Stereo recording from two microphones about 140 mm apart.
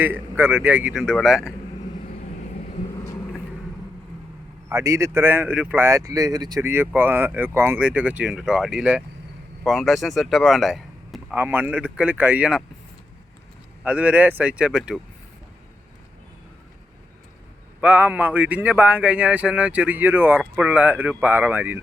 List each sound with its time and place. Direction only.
0.0 s speech: 15° right (ahead or behind)
4.7 s speech: 20° right (ahead or behind)
6.6 s speech: 15° right (ahead or behind)
11.3 s speech: 10° right (ahead or behind)
13.8 s speech: 10° right (ahead or behind)
17.7 s speech: 10° right (ahead or behind)